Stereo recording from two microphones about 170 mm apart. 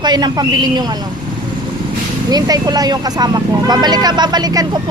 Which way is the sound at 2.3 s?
20° right (ahead or behind).